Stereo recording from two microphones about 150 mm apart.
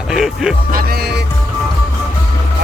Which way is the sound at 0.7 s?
85° right.